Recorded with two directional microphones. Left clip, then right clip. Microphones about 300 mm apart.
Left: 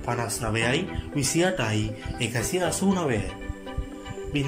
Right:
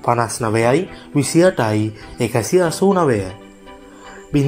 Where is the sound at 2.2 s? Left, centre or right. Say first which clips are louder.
Right 11 dB; centre.